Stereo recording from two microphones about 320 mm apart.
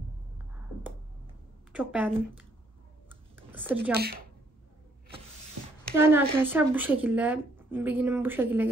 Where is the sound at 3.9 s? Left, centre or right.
Right.